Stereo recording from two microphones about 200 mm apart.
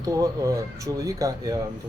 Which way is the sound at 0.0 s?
15° right (ahead or behind).